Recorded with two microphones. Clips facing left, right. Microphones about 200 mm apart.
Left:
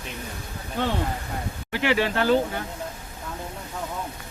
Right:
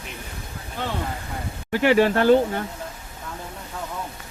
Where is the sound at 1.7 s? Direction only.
45° right (ahead or behind).